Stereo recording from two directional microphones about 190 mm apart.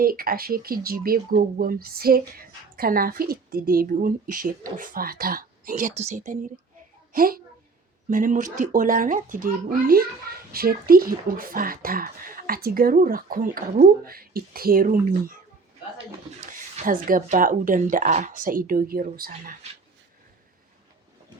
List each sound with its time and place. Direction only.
0.0 s a child's voice: 50° right (ahead or behind)
16.5 s speech: 45° right (ahead or behind)